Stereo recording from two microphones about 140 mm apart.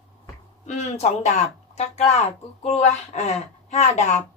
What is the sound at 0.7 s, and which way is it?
A woman's voice, 55° left (ahead or behind).